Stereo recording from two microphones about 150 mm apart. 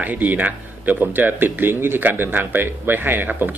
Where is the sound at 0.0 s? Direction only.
10° right (ahead or behind).